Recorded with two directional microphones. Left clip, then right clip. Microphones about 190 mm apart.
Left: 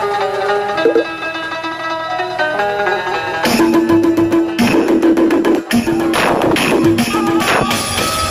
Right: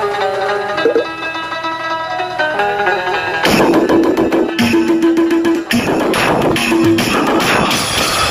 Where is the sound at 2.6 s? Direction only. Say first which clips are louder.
Right 1 dB; 65° left (ahead or behind).